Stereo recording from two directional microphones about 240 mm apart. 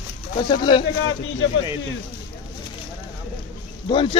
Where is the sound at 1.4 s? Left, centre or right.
Left.